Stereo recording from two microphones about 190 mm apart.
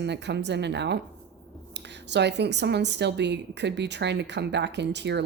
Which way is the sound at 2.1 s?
65° right (ahead or behind).